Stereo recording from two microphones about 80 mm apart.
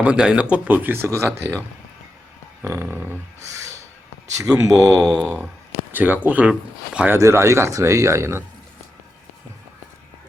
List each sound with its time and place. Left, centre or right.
0.0 s speech: centre; by 1.5 s right
2.6 s a sound: right
2.9 s speech: right
3.4 s a sound: right
4.4 s speech: right
5.0 s speech: centre
5.9 s speech: right
7.2 s speech: right